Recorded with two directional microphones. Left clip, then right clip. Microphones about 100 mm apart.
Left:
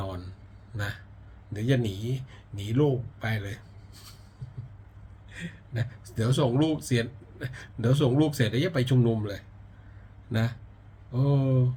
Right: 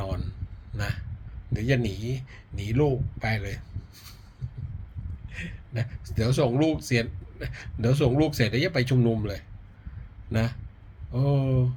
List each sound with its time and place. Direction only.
0.0 s a sound: 25° left (ahead or behind)
1.5 s speech: 25° left (ahead or behind)
5.3 s speech: 20° left (ahead or behind)
10.3 s speech: 25° left (ahead or behind)